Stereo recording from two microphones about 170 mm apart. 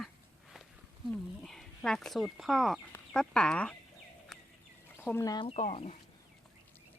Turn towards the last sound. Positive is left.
turn(degrees=40)  # may be behind; listen again after turning